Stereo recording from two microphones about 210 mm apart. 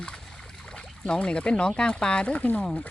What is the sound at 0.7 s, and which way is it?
Speech, 5° left (ahead or behind).